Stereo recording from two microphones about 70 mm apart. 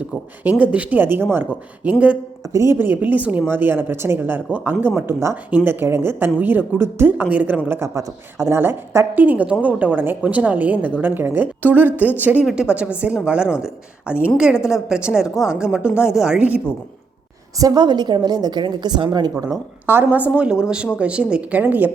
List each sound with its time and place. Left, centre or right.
0.6 s a woman's voice: right
2.5 s speech: right
2.7 s a woman's voice: right
7.3 s a woman's voice: right
7.8 s a woman's voice: right
9.1 s a woman's voice: right
17.6 s a woman's voice: right
20.1 s a woman's voice: right
21.6 s a woman's voice: right